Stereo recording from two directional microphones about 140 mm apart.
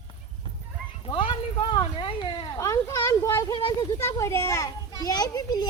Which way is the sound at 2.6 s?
20° left (ahead or behind).